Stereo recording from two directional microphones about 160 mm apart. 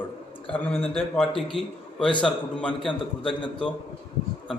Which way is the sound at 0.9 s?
Centre (ahead or behind).